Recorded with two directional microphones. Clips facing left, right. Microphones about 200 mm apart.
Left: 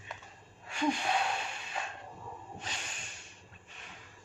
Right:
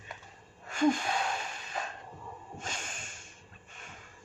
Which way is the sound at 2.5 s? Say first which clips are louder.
Right 2 dB; 45° right (ahead or behind).